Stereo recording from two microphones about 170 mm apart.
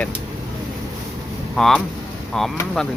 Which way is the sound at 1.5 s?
Centre (ahead or behind).